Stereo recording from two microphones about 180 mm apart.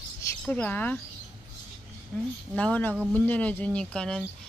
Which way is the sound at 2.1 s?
5° left (ahead or behind).